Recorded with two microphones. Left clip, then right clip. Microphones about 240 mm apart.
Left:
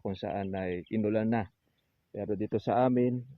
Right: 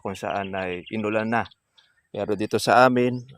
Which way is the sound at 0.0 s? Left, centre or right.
Centre.